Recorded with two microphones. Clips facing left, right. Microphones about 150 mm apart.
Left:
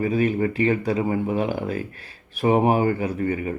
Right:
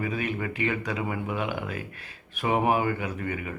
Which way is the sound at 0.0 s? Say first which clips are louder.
Left 9 dB; 35° left (ahead or behind).